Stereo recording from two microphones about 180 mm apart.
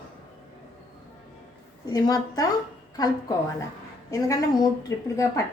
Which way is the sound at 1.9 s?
20° left (ahead or behind).